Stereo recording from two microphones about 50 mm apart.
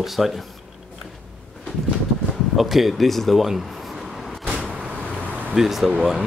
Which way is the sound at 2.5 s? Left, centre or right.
Centre.